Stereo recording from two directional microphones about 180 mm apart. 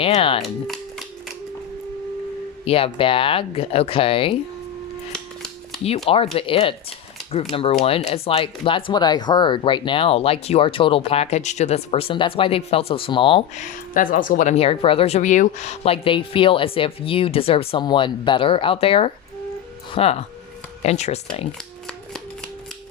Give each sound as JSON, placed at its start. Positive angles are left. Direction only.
{"t": 0.0, "sound": "speech", "side_deg": 30}
{"t": 0.4, "sound": "music", "side_deg": 0}
{"t": 2.6, "sound": "speech", "side_deg": 30}
{"t": 5.1, "sound": "scissors", "side_deg": 5}
{"t": 6.3, "sound": "speech", "side_deg": 30}
{"t": 13.6, "sound": "speech", "side_deg": 50}